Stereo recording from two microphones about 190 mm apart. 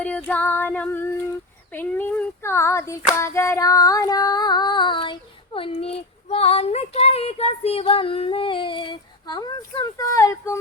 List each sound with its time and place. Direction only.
0.3 s speech: 10° left (ahead or behind)
3.2 s female singing: 15° left (ahead or behind)
5.5 s speech: 30° left (ahead or behind)